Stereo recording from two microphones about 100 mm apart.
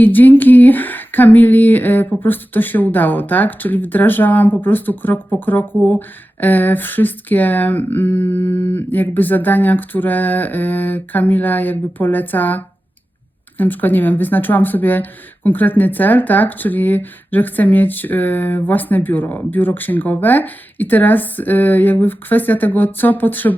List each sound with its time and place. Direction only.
0.0 s speech: 20° left (ahead or behind)